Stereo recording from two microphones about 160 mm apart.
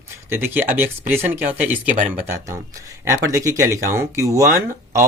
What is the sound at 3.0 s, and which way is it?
Speech, 20° right (ahead or behind).